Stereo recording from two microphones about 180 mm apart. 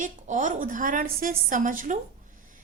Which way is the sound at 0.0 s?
45° right (ahead or behind).